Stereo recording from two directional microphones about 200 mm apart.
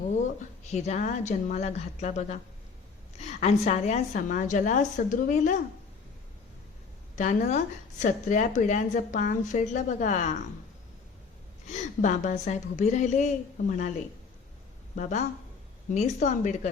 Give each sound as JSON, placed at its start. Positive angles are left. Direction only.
{"t": 0.7, "sound": "a woman's voice", "side_deg": 35}
{"t": 7.2, "sound": "a woman's voice", "side_deg": 35}
{"t": 11.7, "sound": "a woman's voice", "side_deg": 35}
{"t": 16.0, "sound": "a woman's voice", "side_deg": 35}